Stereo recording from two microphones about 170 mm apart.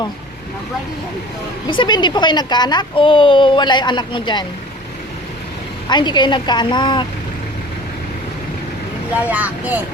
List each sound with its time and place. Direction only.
1.6 s a woman's voice: 25° left (ahead or behind)
5.9 s a woman's voice: 25° left (ahead or behind)
9.1 s speech: 10° right (ahead or behind)